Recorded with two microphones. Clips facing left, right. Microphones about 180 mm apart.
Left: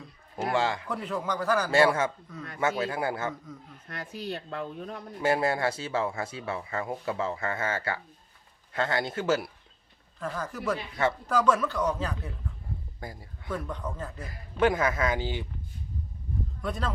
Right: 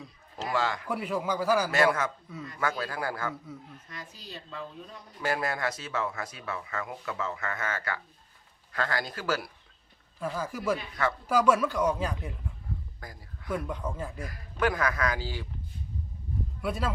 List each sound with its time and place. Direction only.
0.5 s speech: 25° left (ahead or behind)
0.9 s speech: 10° right (ahead or behind)
1.7 s speech: 30° left (ahead or behind)
3.8 s speech: 60° left (ahead or behind)
5.2 s speech: 25° left (ahead or behind)
10.2 s speech: 10° right (ahead or behind)
13.0 s speech: 25° left (ahead or behind)
13.5 s speech: 10° right (ahead or behind)
14.2 s speech: 25° left (ahead or behind)
16.6 s speech: 10° right (ahead or behind)